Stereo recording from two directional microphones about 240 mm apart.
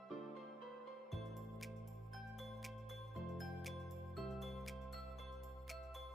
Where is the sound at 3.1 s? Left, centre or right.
Centre.